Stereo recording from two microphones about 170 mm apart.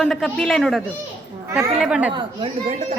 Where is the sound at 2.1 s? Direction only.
30° right (ahead or behind).